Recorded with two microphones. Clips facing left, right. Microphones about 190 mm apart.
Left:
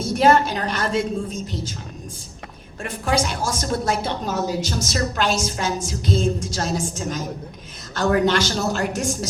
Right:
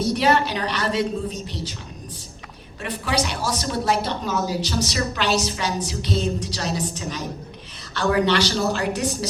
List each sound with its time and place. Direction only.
0.0 s a woman's voice: 45° left (ahead or behind)
2.8 s a woman's voice: 45° left (ahead or behind)